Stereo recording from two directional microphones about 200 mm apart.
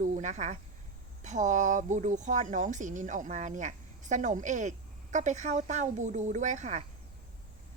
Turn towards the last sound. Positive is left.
turn(degrees=-35)  # may be behind; listen again after turning